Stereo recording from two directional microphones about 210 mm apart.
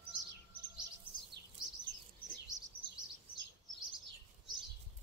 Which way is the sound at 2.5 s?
20° right (ahead or behind).